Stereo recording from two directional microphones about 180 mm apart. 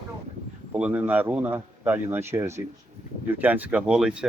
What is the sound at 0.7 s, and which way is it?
Speech, 10° right (ahead or behind).